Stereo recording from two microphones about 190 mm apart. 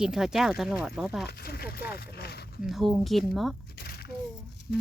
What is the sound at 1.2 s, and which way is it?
Speech, 55° left (ahead or behind).